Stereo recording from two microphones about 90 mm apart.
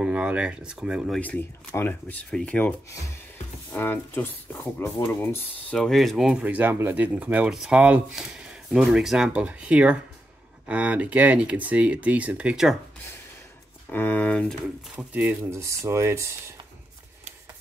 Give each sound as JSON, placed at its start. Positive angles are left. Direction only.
{"t": 0.0, "sound": "speech", "side_deg": -15}
{"t": 1.2, "sound": "speech", "side_deg": 15}
{"t": 3.7, "sound": "speech", "side_deg": 20}
{"t": 5.8, "sound": "speech", "side_deg": 0}
{"t": 6.4, "sound": "speech", "side_deg": -20}
{"t": 13.8, "sound": "speech", "side_deg": 20}
{"t": 15.0, "sound": "speech", "side_deg": -15}
{"t": 15.5, "sound": "speech", "side_deg": -30}